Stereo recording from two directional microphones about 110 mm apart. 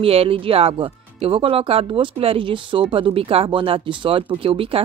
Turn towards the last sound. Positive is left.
turn(degrees=-55)  # may be behind; listen again after turning